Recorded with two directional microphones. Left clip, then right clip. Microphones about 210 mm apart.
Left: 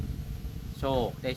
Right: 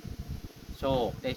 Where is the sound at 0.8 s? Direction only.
10° left (ahead or behind).